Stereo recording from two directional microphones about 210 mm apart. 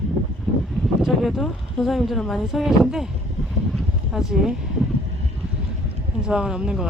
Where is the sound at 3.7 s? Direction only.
Centre (ahead or behind).